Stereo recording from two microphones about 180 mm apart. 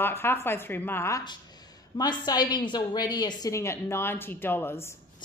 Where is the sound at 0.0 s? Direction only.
10° left (ahead or behind).